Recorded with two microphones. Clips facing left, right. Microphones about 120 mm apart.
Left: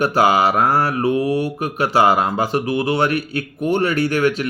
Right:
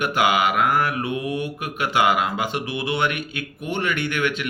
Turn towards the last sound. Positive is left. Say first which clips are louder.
# left 7 dB
turn(degrees=35)  # may be behind; listen again after turning